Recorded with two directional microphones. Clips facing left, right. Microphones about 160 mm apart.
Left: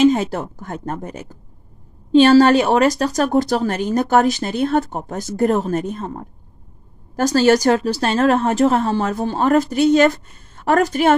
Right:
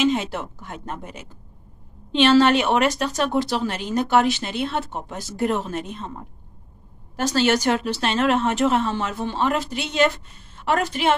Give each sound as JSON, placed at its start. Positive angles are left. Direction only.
{"t": 0.0, "sound": "a woman's voice", "side_deg": 40}